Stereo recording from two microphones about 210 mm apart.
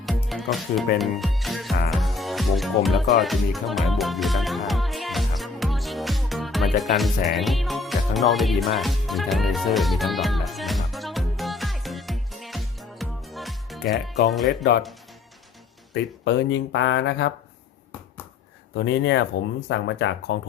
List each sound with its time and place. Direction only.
0.0 s music: centre (ahead or behind)
0.9 s speech: centre (ahead or behind)
1.9 s music: centre (ahead or behind)
7.3 s speech: centre (ahead or behind)
10.9 s music: centre (ahead or behind)
14.1 s speech: centre (ahead or behind)
16.2 s speech: 55° left (ahead or behind)
18.7 s speech: 55° left (ahead or behind)